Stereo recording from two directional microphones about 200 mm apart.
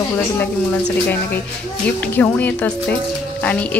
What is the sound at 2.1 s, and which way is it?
Speech, 10° left (ahead or behind).